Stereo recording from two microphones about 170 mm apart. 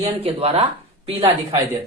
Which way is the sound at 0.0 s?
35° right (ahead or behind).